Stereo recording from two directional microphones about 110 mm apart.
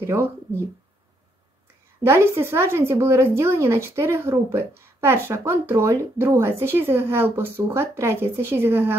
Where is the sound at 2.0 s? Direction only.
25° right (ahead or behind).